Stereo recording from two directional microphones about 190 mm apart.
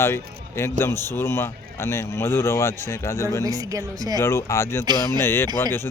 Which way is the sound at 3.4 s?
20° right (ahead or behind).